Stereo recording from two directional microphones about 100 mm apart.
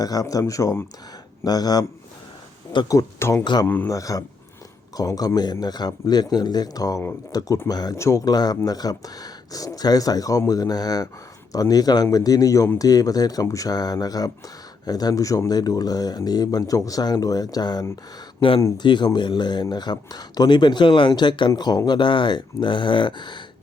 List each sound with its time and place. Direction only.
0.0 s speech: 40° left (ahead or behind)
2.9 s speech: 30° left (ahead or behind)
3.4 s speech: 45° left (ahead or behind)
3.8 s speech: 35° left (ahead or behind)
7.9 s speech: 30° left (ahead or behind)
18.3 s speech: 60° left (ahead or behind)
18.8 s speech: 50° left (ahead or behind)